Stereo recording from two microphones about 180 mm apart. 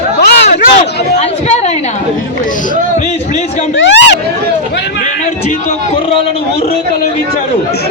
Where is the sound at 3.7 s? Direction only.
80° left.